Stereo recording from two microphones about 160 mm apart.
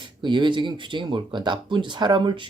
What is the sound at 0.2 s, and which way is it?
Speech, 30° right (ahead or behind).